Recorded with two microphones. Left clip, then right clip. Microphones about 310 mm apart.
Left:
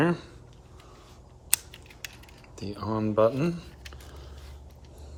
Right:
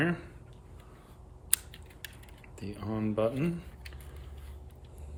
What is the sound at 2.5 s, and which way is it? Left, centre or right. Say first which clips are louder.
Speech: left 6 dB; centre.